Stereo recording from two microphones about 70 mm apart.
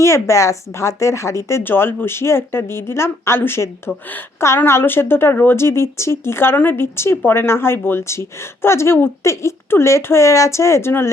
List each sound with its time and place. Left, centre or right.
0.0 s speech: left
1.6 s speech: left